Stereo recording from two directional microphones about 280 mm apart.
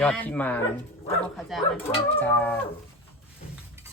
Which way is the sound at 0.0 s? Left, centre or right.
Centre.